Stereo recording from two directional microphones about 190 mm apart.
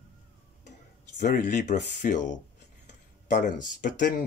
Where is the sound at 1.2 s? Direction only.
40° left (ahead or behind).